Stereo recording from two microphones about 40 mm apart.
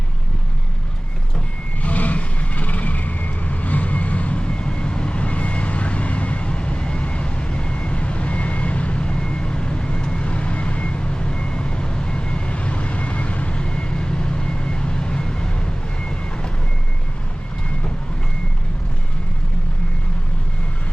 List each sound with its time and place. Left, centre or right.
1.8 s vehicle: left